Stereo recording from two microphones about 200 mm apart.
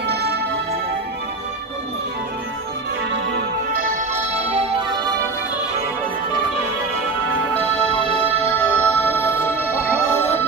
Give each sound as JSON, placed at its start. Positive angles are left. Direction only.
{"t": 0.0, "sound": "music", "side_deg": -55}
{"t": 3.1, "sound": "music", "side_deg": -55}
{"t": 4.1, "sound": "music", "side_deg": -30}
{"t": 8.7, "sound": "music", "side_deg": 10}